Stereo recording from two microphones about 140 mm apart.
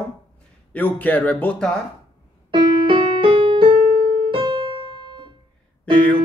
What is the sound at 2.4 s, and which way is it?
Music, 35° right (ahead or behind).